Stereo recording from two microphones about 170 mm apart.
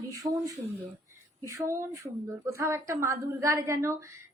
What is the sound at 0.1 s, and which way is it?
A woman's voice, 20° right (ahead or behind).